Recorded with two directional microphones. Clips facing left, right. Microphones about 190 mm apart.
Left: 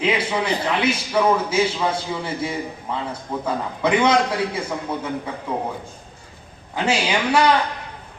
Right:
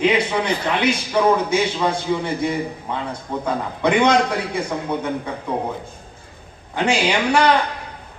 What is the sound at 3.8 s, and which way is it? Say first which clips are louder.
Speech: right 2 dB; 5° left (ahead or behind).